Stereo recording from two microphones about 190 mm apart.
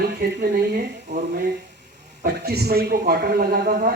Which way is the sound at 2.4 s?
55° right (ahead or behind).